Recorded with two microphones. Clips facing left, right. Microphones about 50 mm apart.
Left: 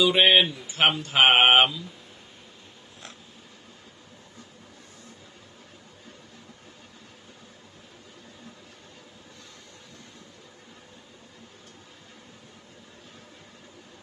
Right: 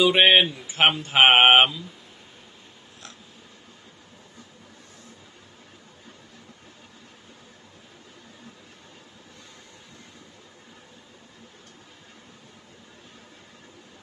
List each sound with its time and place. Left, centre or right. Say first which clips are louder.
0.0 s speech: right 2 dB; centre